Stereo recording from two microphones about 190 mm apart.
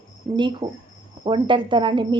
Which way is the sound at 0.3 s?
25° right (ahead or behind).